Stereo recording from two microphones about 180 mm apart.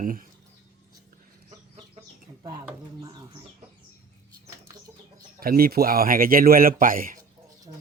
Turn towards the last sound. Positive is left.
turn(degrees=-50)  # may be behind; listen again after turning